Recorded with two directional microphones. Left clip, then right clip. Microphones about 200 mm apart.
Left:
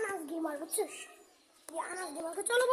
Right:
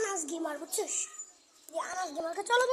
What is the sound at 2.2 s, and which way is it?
Speech, centre (ahead or behind).